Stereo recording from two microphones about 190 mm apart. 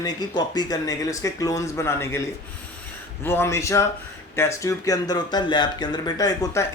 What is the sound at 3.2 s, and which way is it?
Speech, 10° left (ahead or behind).